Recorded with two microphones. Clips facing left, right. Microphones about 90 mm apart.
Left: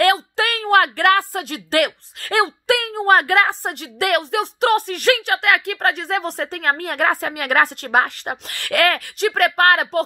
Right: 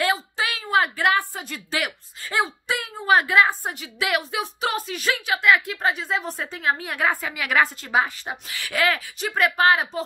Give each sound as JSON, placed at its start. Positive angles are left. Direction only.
{"t": 0.0, "sound": "a woman's voice", "side_deg": 65}